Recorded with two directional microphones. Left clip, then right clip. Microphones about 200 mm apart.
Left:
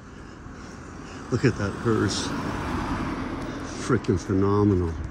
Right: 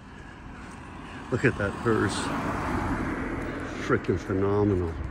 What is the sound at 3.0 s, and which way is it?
Vehicle, 45° left (ahead or behind).